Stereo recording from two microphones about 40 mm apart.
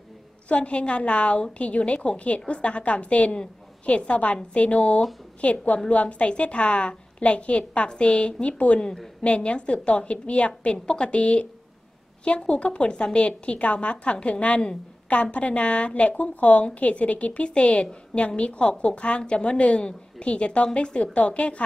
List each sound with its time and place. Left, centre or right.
0.5 s a woman's voice: left